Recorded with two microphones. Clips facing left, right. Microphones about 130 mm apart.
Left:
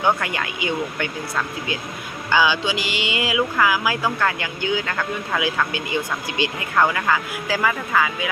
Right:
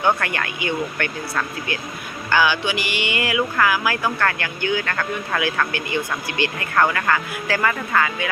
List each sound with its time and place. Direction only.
0.0 s speech: 15° left (ahead or behind)